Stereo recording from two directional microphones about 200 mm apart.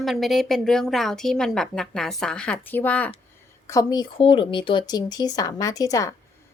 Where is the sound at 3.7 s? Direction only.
20° left (ahead or behind).